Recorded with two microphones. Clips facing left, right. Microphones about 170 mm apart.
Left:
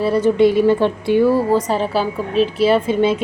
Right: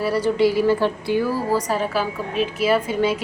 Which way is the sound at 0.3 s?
20° left (ahead or behind).